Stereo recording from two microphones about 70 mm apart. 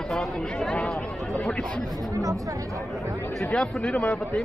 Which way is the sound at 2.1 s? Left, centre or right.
Right.